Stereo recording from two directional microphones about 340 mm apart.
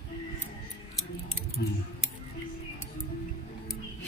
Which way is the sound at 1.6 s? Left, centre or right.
Left.